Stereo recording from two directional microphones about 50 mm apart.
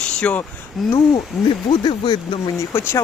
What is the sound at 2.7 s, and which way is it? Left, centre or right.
Speech, left.